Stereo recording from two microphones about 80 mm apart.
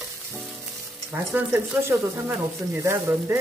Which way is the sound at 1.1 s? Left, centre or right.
Right.